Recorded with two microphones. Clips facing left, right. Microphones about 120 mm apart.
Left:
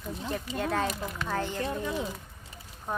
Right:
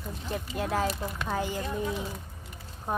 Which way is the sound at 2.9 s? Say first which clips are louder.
Right 3 dB; 10° right (ahead or behind).